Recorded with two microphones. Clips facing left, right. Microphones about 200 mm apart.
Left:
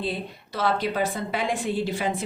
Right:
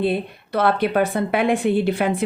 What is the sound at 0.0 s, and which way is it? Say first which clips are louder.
A woman's voice: right 8 dB; 60° right (ahead or behind).